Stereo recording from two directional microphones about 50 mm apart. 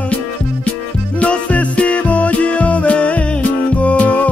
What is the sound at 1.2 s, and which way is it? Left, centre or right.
Music, left.